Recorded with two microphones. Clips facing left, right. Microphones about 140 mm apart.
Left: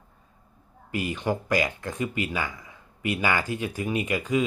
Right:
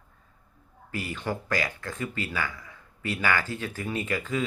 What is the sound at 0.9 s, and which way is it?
Speech, 20° left (ahead or behind).